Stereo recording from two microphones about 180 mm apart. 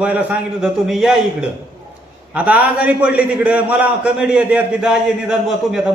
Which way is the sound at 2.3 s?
10° right (ahead or behind).